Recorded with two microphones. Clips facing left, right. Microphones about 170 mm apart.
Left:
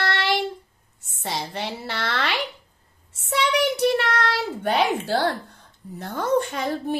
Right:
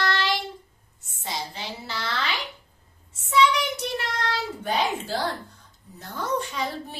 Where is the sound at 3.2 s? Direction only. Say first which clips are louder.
Even; 60° left (ahead or behind).